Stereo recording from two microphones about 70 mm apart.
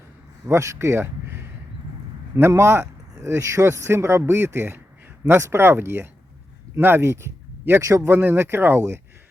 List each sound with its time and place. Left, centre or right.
0.4 s speech: right
7.8 s a man's voice: right
8.1 s speech: right